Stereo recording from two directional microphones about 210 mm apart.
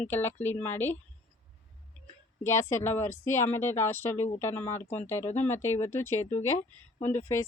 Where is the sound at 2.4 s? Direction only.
10° left (ahead or behind).